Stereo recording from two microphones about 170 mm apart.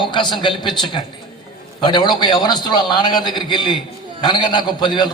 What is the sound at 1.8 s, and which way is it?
A man's voice, 25° left (ahead or behind).